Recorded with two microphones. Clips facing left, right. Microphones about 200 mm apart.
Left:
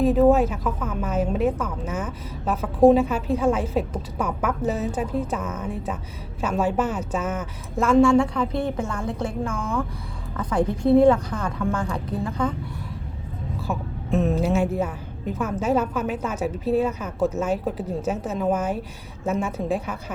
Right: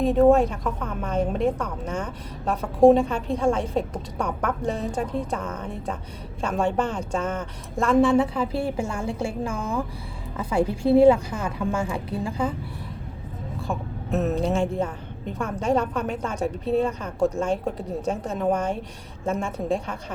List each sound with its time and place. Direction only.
0.0 s a woman's voice: centre (ahead or behind)
9.5 s speech: 30° right (ahead or behind)
10.3 s a woman's voice: 10° right (ahead or behind)
13.6 s a woman's voice: centre (ahead or behind)